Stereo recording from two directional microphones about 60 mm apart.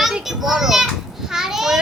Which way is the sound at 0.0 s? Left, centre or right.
Centre.